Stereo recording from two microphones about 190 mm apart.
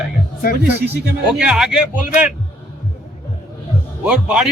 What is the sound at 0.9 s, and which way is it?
Speech, 55° right (ahead or behind).